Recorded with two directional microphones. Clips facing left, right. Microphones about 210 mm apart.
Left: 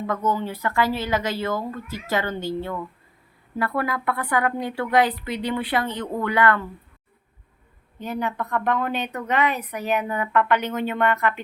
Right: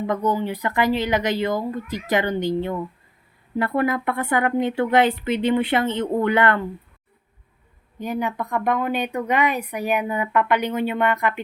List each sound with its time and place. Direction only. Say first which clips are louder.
0.1 s a woman's voice: right 2 dB; 15° right (ahead or behind)
7.9 s speech: right 2 dB; 10° right (ahead or behind)